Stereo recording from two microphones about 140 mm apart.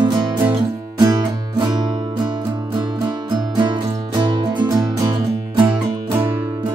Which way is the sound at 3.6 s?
30° right (ahead or behind).